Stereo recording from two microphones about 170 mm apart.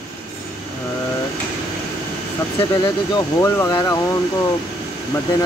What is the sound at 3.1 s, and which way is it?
Speech, 20° left (ahead or behind).